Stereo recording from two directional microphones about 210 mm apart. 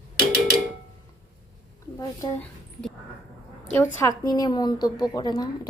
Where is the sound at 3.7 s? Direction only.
15° left (ahead or behind).